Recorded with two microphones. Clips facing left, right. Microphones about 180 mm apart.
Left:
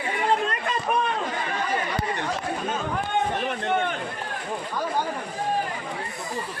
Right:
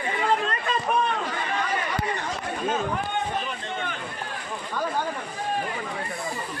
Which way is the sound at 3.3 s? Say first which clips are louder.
Left 5 dB; 65° left (ahead or behind).